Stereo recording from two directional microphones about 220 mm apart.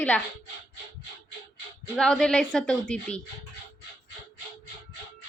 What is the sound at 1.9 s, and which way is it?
A woman's voice, 5° left (ahead or behind).